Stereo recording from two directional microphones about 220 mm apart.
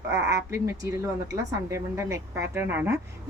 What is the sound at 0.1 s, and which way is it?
A woman's voice, 15° right (ahead or behind).